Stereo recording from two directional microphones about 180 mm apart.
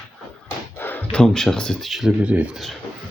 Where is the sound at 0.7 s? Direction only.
10° left (ahead or behind).